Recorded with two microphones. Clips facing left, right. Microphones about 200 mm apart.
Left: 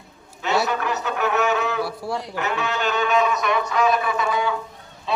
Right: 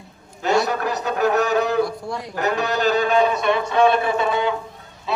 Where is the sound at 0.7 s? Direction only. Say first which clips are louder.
Right 2 dB; 35° right (ahead or behind).